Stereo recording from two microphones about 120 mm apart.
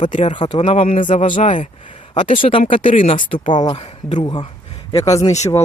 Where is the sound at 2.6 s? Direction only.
90° left.